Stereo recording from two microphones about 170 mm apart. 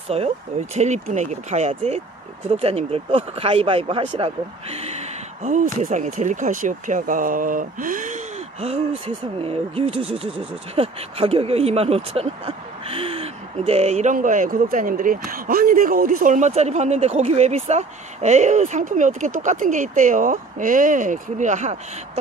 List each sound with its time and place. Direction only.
0.1 s speech: 35° right (ahead or behind)